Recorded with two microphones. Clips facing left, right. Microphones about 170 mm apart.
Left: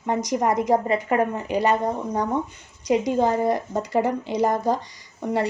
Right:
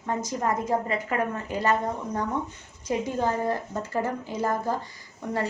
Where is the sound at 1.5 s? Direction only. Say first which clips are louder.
Left 7 dB; 75° left (ahead or behind).